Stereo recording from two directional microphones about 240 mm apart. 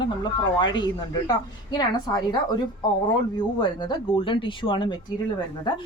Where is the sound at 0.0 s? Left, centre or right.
Centre.